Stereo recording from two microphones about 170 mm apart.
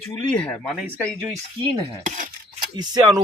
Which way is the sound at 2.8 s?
25° right (ahead or behind).